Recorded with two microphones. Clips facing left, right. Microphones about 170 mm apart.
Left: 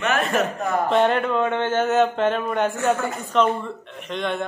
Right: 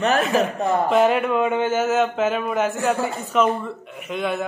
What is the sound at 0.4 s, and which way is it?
Speech, 25° right (ahead or behind).